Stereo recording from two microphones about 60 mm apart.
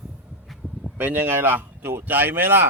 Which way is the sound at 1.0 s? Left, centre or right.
Right.